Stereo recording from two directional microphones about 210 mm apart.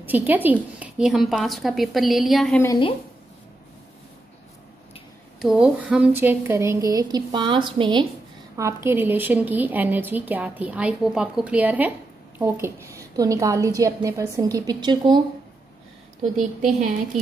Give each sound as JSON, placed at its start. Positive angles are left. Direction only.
{"t": 0.0, "sound": "a woman's voice", "side_deg": -10}
{"t": 2.6, "sound": "a woman's voice", "side_deg": 15}
{"t": 5.4, "sound": "a woman's voice", "side_deg": -5}
{"t": 8.5, "sound": "a woman's voice", "side_deg": -10}
{"t": 16.2, "sound": "a woman's voice", "side_deg": -35}